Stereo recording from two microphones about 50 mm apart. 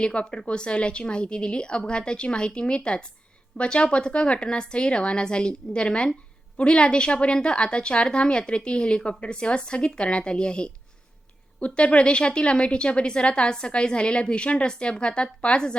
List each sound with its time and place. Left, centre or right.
0.0 s a woman's voice: left